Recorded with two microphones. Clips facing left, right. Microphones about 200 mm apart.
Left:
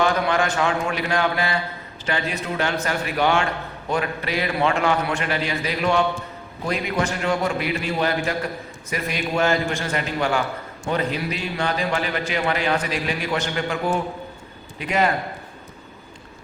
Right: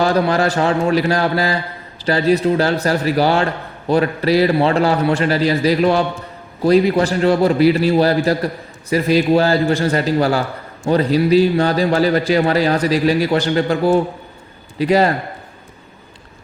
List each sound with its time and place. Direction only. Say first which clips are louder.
0.0 s a man's voice: right 5 dB; 35° right (ahead or behind)